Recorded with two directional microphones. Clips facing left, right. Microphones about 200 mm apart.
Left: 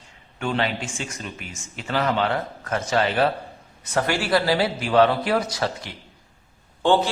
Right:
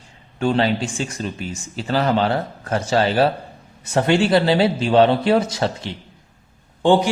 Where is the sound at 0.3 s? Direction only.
30° right (ahead or behind).